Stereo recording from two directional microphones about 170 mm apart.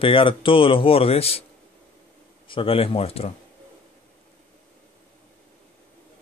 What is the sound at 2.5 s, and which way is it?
Speech, 30° left (ahead or behind).